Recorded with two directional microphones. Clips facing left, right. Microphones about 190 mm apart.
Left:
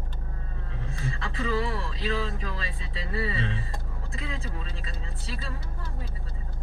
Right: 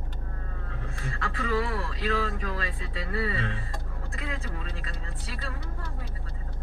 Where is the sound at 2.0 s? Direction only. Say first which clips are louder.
Right 1 dB; 50° right (ahead or behind).